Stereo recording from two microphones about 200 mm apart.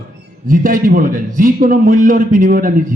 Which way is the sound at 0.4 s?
45° right (ahead or behind).